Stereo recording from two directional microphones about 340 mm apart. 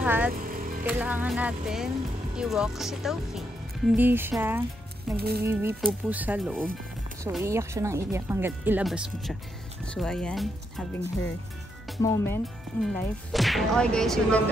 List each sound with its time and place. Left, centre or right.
0.0 s speech: centre
0.5 s vehicle: right
0.8 s speech: centre
5.1 s speech: right
5.5 s speech: centre
12.0 s speech: centre